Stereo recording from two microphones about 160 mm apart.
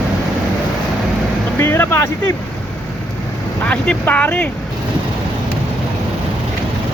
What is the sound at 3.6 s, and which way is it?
Speech, 10° left (ahead or behind).